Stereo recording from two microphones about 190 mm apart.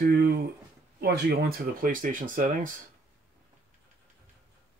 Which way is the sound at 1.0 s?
55° right (ahead or behind).